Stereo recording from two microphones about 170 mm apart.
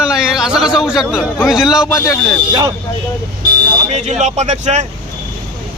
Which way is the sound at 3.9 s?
40° right (ahead or behind).